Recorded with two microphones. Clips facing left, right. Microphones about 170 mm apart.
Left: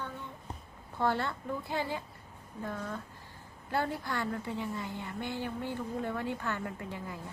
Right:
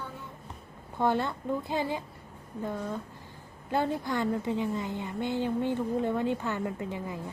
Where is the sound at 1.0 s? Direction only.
15° right (ahead or behind).